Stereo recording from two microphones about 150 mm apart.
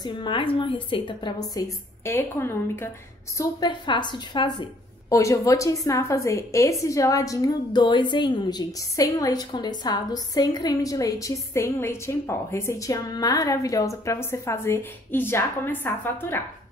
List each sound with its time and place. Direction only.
0.0 s a woman's voice: 30° left (ahead or behind); by 2.9 s 15° left (ahead or behind)
3.3 s a woman's voice: 30° left (ahead or behind)